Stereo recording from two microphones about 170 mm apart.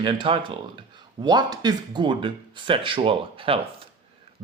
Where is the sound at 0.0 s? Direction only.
30° right (ahead or behind).